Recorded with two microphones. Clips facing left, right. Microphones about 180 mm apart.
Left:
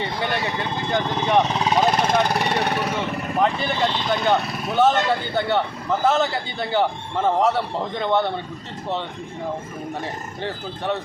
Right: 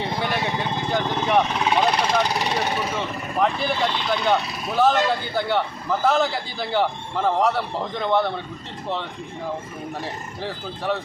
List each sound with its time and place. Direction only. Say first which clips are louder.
0.0 s a man's voice: even; centre (ahead or behind)
1.7 s vehicle: left 2 dB; 45° left (ahead or behind)
2.2 s speech: left 2 dB; 60° left (ahead or behind)
3.4 s a man's voice: even; centre (ahead or behind)
10.4 s a man's voice: left 1 dB; centre (ahead or behind)